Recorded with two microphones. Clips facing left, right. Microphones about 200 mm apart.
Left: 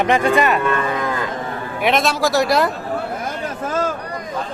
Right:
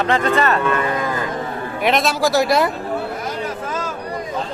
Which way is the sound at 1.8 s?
Centre (ahead or behind).